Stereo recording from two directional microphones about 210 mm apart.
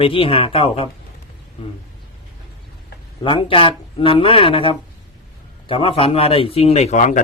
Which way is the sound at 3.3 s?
25° left (ahead or behind).